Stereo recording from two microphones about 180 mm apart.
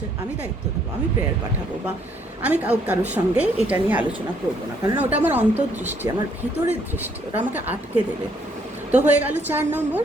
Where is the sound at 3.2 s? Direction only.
20° right (ahead or behind).